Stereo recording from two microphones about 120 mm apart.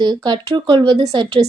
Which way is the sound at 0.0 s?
40° right (ahead or behind).